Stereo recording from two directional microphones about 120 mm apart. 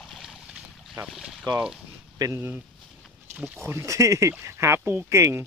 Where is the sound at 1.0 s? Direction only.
5° right (ahead or behind).